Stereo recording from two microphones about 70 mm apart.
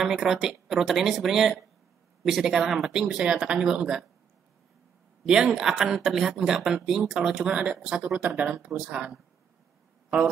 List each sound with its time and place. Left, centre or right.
0.0 s speech: centre
5.2 s speech: centre